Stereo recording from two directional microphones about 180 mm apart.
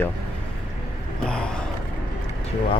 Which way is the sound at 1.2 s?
5° left (ahead or behind).